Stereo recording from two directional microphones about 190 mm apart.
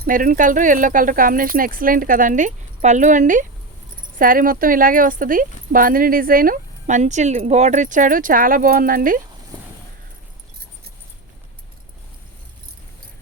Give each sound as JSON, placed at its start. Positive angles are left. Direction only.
{"t": 0.0, "sound": "speech", "side_deg": -45}